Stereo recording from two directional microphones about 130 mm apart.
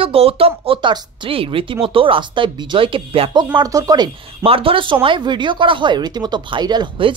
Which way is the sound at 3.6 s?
30° right (ahead or behind).